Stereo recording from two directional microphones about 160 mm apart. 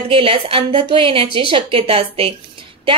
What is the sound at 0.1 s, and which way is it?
A woman's voice, 35° right (ahead or behind).